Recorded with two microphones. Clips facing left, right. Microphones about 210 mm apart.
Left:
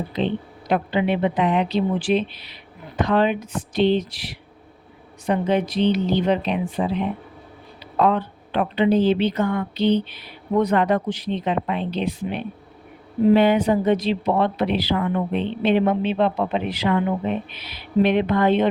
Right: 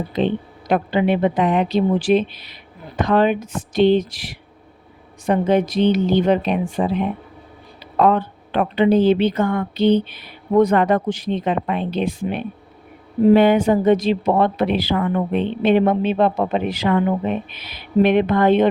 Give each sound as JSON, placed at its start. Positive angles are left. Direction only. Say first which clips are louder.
{"t": 0.7, "sound": "speech", "louder": "right 3 dB", "side_deg": -45}